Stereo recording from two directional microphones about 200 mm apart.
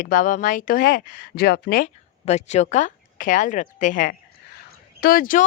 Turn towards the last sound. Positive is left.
turn(degrees=45)  # may be behind; listen again after turning